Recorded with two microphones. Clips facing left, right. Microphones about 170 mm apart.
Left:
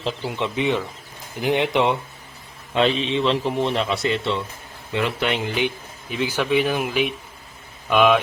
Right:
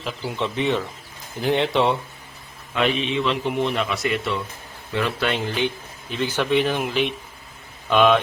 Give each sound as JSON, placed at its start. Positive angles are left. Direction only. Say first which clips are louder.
{"t": 0.0, "sound": "speech", "louder": "left 3 dB", "side_deg": 25}
{"t": 0.3, "sound": "a man's voice", "louder": "right 1 dB", "side_deg": 15}
{"t": 2.7, "sound": "a man's voice", "louder": "left 2 dB", "side_deg": 30}